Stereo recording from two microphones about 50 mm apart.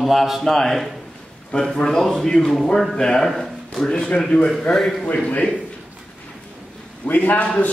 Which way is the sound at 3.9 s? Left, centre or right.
Centre.